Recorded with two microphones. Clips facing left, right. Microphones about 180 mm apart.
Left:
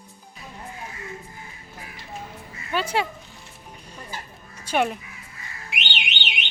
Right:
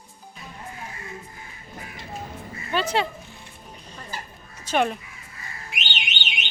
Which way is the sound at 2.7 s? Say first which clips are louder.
Right 1 dB; 10° left (ahead or behind).